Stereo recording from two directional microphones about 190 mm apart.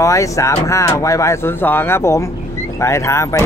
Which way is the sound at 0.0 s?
15° left (ahead or behind).